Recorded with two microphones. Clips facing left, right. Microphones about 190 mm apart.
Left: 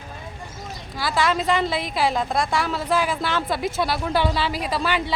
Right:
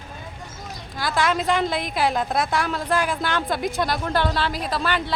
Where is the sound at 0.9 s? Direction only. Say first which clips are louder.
Even; centre (ahead or behind).